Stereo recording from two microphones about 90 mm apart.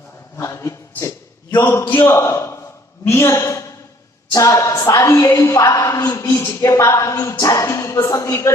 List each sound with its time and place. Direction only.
0.3 s a woman's voice: 35° left (ahead or behind)